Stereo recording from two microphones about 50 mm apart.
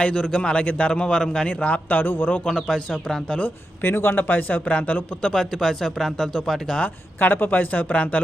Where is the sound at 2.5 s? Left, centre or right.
Centre.